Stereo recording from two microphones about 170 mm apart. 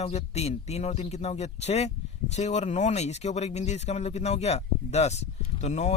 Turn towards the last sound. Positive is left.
turn(degrees=40)  # may be behind; listen again after turning